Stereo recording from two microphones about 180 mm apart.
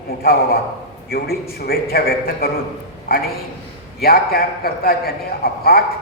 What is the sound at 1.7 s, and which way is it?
A man's voice, 55° left (ahead or behind).